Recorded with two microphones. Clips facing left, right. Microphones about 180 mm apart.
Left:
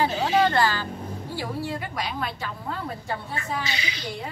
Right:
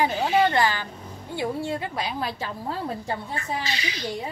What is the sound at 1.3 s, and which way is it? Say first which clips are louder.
A woman's voice: right 4 dB; 20° right (ahead or behind).